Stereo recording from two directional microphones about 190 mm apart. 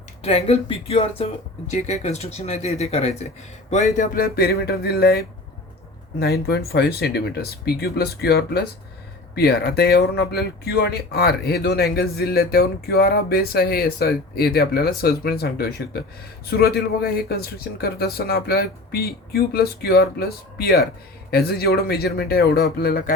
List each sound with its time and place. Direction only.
0.2 s speech: 30° left (ahead or behind); by 23.1 s 50° left (ahead or behind)